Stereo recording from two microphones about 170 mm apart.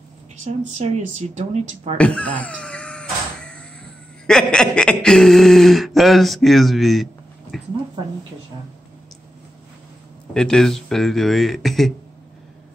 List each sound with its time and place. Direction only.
0.7 s speech: 45° right (ahead or behind)
2.0 s a sound: 5° left (ahead or behind)
4.3 s speech: 5° left (ahead or behind)
10.3 s speech: 5° left (ahead or behind)